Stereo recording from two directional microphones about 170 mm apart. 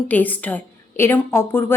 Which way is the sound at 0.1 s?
10° left (ahead or behind).